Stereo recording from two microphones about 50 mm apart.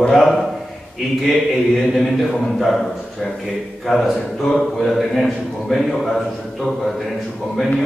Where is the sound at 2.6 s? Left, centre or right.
Centre.